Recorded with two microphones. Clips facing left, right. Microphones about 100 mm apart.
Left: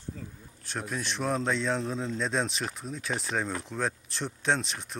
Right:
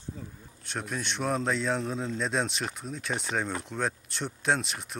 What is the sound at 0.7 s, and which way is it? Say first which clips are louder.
A man's voice: even; centre (ahead or behind).